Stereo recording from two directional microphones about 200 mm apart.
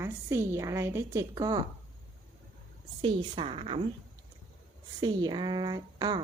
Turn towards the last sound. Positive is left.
turn(degrees=-20)  # may be behind; listen again after turning